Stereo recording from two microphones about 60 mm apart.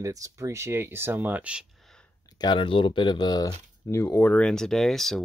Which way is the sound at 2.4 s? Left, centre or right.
Left.